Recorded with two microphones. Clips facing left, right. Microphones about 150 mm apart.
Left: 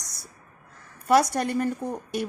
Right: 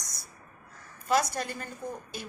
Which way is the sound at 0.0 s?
65° left (ahead or behind).